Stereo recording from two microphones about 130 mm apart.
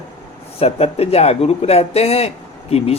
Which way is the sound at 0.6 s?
50° left (ahead or behind).